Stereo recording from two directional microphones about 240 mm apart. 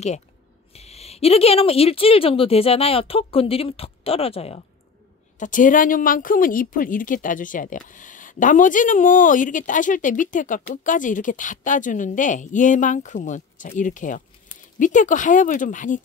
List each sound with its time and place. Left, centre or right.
0.7 s a woman's voice: left